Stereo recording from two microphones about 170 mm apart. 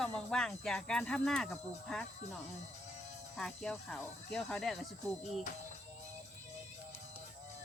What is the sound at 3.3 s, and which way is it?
Speech, centre (ahead or behind).